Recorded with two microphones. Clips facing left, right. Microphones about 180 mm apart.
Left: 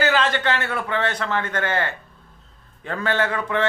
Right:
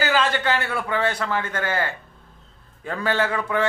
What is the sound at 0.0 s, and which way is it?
A man's voice, 10° right (ahead or behind).